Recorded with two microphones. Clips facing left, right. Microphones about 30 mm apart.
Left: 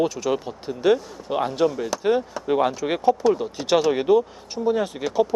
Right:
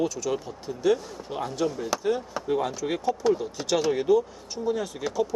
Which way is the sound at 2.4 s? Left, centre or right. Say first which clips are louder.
Left 5 dB; left.